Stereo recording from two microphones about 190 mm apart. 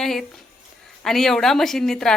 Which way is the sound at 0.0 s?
Centre (ahead or behind).